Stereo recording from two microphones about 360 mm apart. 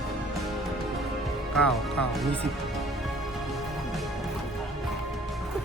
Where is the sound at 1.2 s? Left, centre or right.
Centre.